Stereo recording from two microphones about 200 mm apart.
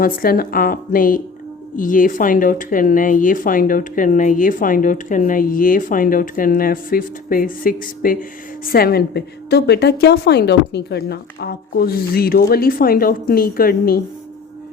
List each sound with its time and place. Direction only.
0.0 s speech: 45° left (ahead or behind)